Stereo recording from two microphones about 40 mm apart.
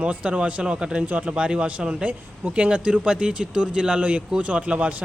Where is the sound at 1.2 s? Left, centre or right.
Right.